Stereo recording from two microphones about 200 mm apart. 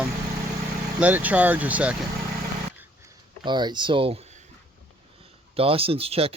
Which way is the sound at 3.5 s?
20° right (ahead or behind).